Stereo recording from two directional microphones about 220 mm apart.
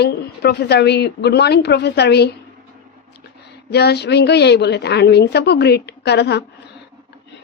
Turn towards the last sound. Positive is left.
turn(degrees=50)  # may be behind; listen again after turning